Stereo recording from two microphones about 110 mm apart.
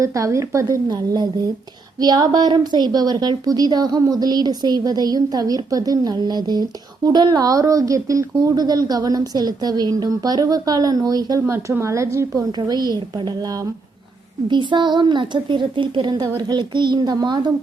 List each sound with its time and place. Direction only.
0.0 s a woman's voice: 30° right (ahead or behind)
12.4 s a woman's voice: 40° right (ahead or behind)
14.4 s a woman's voice: 45° right (ahead or behind)